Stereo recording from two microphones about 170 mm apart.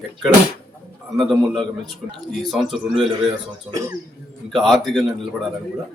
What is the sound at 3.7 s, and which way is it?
Speech, 15° right (ahead or behind).